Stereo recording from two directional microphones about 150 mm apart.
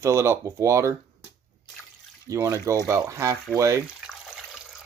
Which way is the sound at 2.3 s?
20° right (ahead or behind).